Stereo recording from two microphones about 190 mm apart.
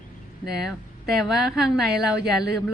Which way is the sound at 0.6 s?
Centre (ahead or behind).